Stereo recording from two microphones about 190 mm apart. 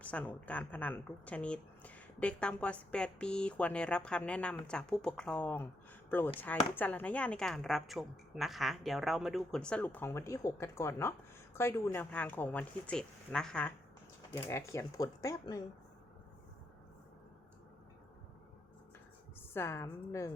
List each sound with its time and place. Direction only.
0.0 s speech: 5° left (ahead or behind)
14.3 s speech: 20° left (ahead or behind)
19.5 s speech: 10° left (ahead or behind)